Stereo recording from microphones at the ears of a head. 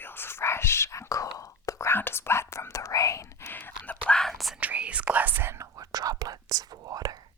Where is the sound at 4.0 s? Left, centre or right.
Centre.